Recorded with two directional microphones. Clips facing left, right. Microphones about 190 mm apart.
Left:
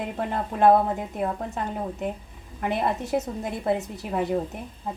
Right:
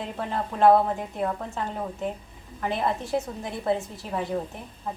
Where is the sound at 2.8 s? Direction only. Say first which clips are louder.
Left 1 dB; 20° left (ahead or behind).